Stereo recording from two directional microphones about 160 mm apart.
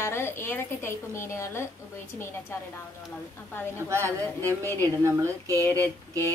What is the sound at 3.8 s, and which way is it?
Speech, 15° right (ahead or behind).